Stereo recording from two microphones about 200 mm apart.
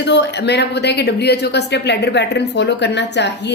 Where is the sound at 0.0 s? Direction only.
60° left (ahead or behind).